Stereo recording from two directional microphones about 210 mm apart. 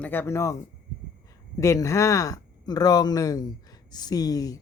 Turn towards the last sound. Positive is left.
turn(degrees=15)  # may be behind; listen again after turning